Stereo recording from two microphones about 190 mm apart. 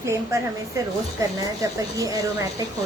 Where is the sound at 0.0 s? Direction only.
15° right (ahead or behind).